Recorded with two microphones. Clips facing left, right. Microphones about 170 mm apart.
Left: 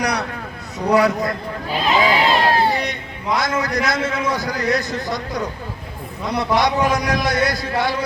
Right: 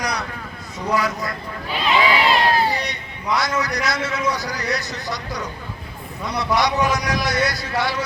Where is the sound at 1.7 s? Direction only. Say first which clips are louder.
Left 1 dB; 40° left (ahead or behind).